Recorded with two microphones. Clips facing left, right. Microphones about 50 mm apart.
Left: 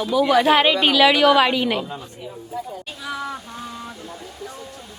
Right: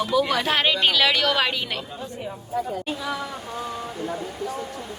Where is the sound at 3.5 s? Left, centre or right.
Centre.